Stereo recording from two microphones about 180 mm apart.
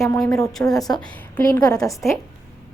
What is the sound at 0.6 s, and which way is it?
Speech, 15° left (ahead or behind).